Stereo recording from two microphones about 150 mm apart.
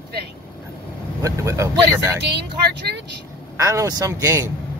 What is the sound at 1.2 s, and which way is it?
Speech, 20° right (ahead or behind).